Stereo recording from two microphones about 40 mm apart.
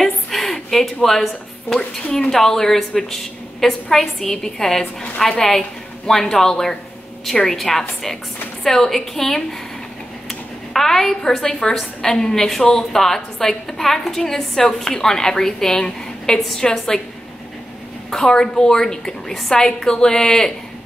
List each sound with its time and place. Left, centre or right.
0.0 s a sound: centre
1.7 s a woman's voice: centre
10.7 s a woman's voice: centre
16.3 s a woman's voice: centre
18.1 s a woman's voice: centre